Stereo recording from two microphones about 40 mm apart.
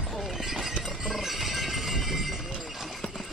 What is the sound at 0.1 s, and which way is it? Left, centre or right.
Shatter, centre.